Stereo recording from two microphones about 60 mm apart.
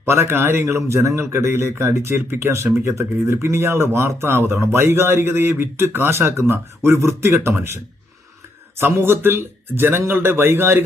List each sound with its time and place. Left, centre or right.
0.0 s a man's voice: right
8.8 s speech: right